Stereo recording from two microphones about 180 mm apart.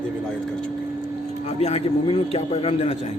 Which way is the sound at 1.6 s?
35° left (ahead or behind).